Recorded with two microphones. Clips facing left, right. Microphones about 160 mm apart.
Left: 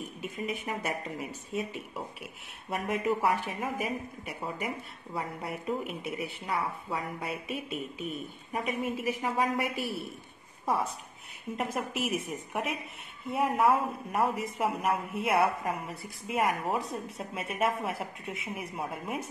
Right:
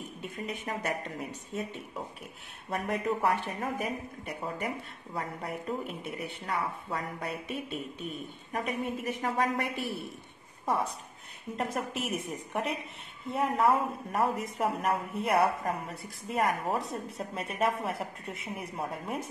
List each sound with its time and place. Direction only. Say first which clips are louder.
0.2 s speech: left 2 dB; 5° left (ahead or behind)